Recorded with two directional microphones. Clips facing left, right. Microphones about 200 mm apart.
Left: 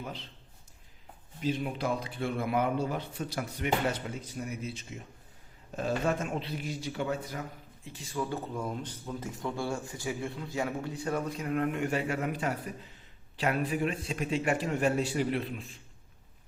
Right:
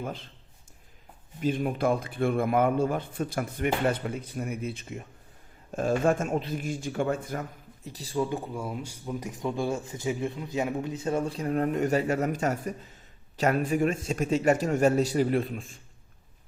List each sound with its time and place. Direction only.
0.0 s a man's voice: 50° right (ahead or behind)
1.4 s a man's voice: 50° right (ahead or behind)
7.9 s speech: 35° right (ahead or behind)
8.2 s a man's voice: 15° right (ahead or behind); by 15.8 s 45° right (ahead or behind)